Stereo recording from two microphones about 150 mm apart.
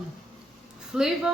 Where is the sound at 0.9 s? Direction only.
5° right (ahead or behind).